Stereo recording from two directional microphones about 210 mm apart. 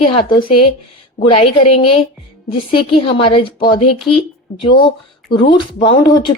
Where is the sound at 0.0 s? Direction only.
25° left (ahead or behind).